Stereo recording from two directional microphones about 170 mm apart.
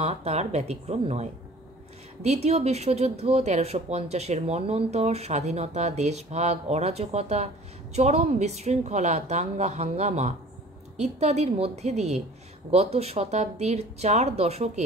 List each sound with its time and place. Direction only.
0.0 s speech: 35° right (ahead or behind)